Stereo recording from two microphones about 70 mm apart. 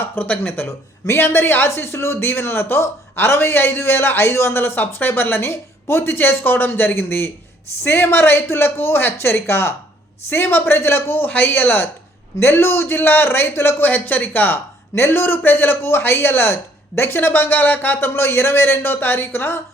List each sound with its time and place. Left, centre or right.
0.0 s speech: left
1.0 s a man's voice: left